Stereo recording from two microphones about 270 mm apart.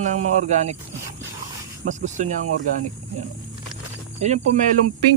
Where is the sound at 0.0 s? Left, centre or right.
Right.